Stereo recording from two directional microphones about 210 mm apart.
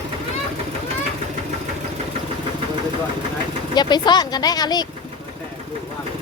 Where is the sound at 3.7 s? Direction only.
20° left (ahead or behind).